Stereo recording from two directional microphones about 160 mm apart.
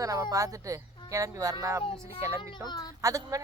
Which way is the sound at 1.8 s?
35° left (ahead or behind).